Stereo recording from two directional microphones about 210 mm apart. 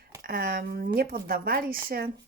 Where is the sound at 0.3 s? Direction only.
45° right (ahead or behind).